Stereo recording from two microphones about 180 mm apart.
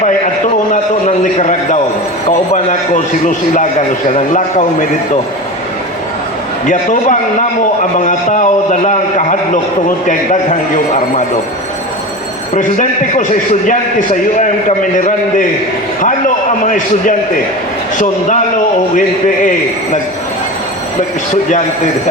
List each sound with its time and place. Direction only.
0.7 s a man's voice: 45° left (ahead or behind)
6.7 s a man's voice: 45° left (ahead or behind)
12.5 s a man's voice: 45° left (ahead or behind)
16.6 s a man's voice: 45° left (ahead or behind)